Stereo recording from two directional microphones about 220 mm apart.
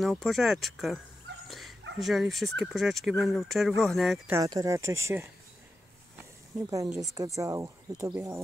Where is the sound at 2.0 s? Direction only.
Centre (ahead or behind).